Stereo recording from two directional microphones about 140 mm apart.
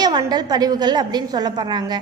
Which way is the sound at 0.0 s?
30° right (ahead or behind).